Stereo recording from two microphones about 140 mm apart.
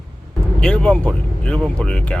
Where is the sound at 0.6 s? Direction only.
5° left (ahead or behind).